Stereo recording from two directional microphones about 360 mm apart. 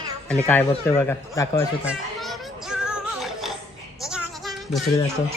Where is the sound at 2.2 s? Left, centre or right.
Centre.